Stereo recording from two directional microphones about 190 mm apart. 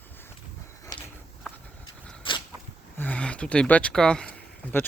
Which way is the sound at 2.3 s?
25° left (ahead or behind).